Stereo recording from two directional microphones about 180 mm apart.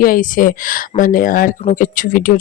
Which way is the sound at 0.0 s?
50° left (ahead or behind).